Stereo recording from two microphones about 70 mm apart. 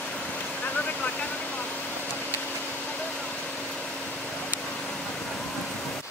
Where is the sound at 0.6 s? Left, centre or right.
Left.